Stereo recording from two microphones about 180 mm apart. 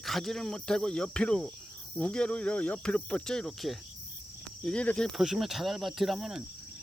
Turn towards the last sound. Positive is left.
turn(degrees=-5)  # may be behind; listen again after turning